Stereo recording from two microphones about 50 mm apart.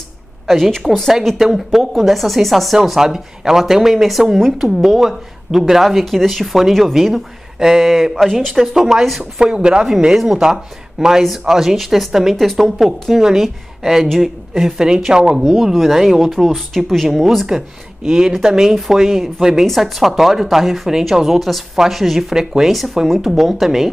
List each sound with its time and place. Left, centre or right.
0.5 s a woman's voice: centre
8.3 s speech: centre
9.4 s speech: centre
9.8 s speech: centre